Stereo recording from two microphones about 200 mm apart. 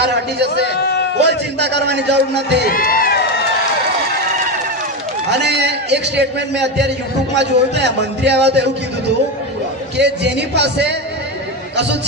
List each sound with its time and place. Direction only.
0.0 s a man's voice: 55° right (ahead or behind)
0.8 s a man's voice: 55° left (ahead or behind)
1.2 s a man's voice: 60° right (ahead or behind)
2.6 s a sound: 45° left (ahead or behind)
5.3 s a man's voice: 55° right (ahead or behind)
10.0 s a man's voice: 60° right (ahead or behind)